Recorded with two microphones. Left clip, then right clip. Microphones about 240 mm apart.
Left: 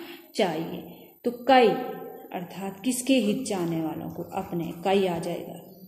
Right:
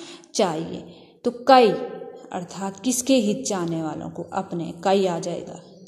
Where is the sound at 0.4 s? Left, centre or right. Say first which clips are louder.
Right 4 dB; right.